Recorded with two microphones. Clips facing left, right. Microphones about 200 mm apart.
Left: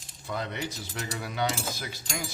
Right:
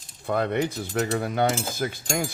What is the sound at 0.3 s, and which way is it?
Cutlery, 55° right (ahead or behind).